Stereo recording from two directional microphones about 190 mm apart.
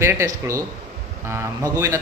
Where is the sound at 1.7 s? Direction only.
15° right (ahead or behind).